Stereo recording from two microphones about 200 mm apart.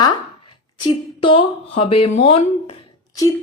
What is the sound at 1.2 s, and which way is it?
Speech, 25° left (ahead or behind).